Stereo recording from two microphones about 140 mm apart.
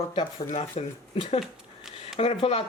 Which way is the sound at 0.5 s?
45° left (ahead or behind).